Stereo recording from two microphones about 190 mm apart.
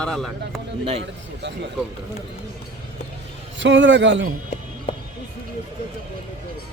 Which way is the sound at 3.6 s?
75° right (ahead or behind).